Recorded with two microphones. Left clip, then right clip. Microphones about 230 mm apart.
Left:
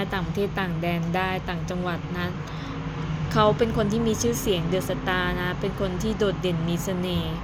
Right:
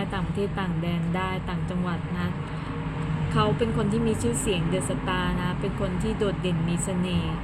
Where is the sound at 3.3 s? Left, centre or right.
Left.